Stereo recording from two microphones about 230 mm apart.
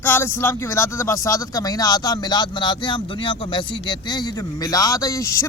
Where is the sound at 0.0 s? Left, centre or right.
Centre.